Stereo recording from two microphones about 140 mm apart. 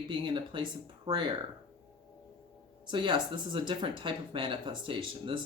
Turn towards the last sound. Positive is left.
turn(degrees=-35)  # may be behind; listen again after turning